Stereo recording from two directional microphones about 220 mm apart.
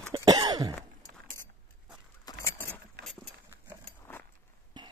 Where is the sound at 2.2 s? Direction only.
10° left (ahead or behind).